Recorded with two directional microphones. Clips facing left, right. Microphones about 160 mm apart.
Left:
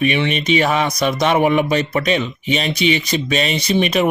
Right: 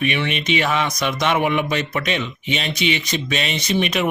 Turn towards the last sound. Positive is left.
turn(degrees=35)  # may be behind; listen again after turning